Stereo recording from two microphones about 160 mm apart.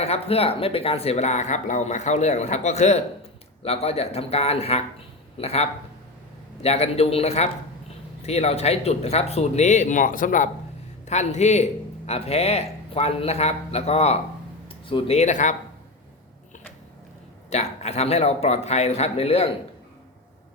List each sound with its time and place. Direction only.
0.0 s a man's voice: 40° left (ahead or behind)
17.5 s speech: 45° left (ahead or behind)